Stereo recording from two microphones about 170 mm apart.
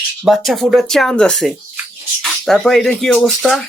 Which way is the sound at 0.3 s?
Centre (ahead or behind).